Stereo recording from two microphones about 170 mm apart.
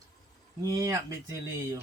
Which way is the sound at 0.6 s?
20° right (ahead or behind).